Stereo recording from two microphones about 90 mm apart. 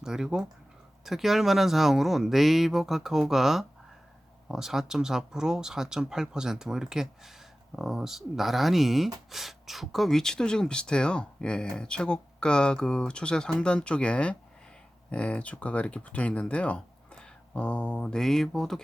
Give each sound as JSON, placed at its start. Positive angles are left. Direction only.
{"t": 0.0, "sound": "speech", "side_deg": -5}